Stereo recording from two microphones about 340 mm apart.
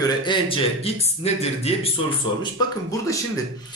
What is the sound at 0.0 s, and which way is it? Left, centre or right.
Speech, centre.